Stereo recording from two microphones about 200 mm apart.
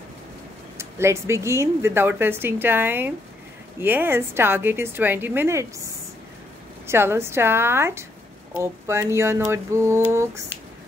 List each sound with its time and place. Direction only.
0.7 s speech: 15° right (ahead or behind)
6.9 s speech: 10° right (ahead or behind)